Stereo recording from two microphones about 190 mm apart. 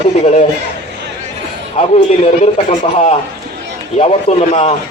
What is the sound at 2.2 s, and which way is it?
Speech, 30° left (ahead or behind).